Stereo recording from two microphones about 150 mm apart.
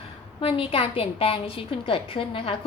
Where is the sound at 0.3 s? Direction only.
35° left (ahead or behind).